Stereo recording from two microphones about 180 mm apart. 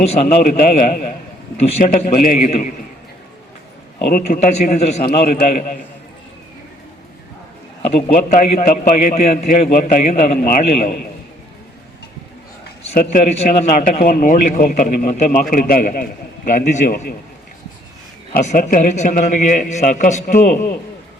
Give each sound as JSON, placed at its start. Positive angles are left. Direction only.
{"t": 0.1, "sound": "speech", "side_deg": 40}
{"t": 4.1, "sound": "a man's voice", "side_deg": 40}
{"t": 5.0, "sound": "speech", "side_deg": 55}
{"t": 7.9, "sound": "a man's voice", "side_deg": 35}
{"t": 13.1, "sound": "a man's voice", "side_deg": 35}
{"t": 13.7, "sound": "speech", "side_deg": 50}
{"t": 18.4, "sound": "speech", "side_deg": 45}